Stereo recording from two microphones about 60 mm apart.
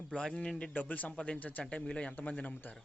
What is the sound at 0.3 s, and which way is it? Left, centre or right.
Speech, centre.